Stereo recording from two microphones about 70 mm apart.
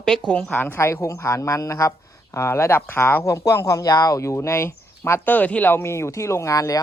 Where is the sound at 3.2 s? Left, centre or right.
Left.